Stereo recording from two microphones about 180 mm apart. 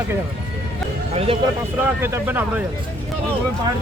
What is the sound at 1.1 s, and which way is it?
Speech, 35° right (ahead or behind).